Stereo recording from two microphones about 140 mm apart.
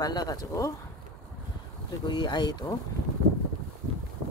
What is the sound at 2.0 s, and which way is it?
Speech, 30° left (ahead or behind).